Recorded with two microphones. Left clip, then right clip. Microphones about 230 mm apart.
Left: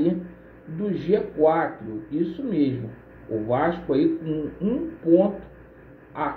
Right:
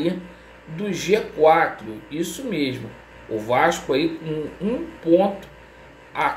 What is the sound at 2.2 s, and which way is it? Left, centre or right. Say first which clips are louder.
Speech: even; centre.